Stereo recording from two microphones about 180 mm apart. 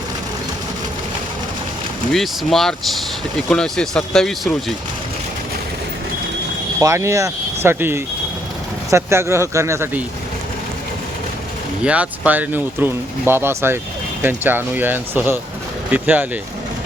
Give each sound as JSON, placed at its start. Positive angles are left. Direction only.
{"t": 2.1, "sound": "speech", "side_deg": 0}
{"t": 6.7, "sound": "speech", "side_deg": -15}
{"t": 11.8, "sound": "speech", "side_deg": -5}